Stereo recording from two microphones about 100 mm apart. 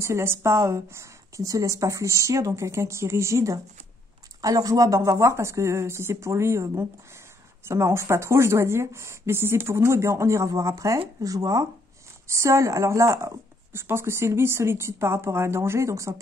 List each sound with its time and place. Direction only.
0.0 s a woman's voice: 25° right (ahead or behind)